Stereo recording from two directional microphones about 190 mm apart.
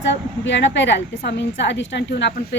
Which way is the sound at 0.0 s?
70° left (ahead or behind).